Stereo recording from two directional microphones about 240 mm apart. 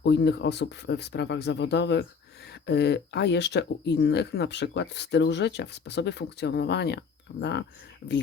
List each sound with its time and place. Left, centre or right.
0.0 s speech: left